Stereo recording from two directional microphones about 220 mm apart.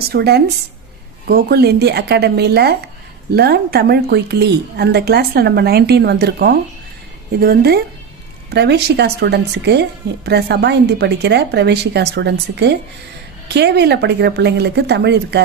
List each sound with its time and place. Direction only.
0.1 s a woman's voice: 45° right (ahead or behind)